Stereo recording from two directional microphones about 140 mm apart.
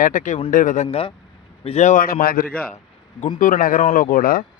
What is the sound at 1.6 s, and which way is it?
Speech, 50° left (ahead or behind).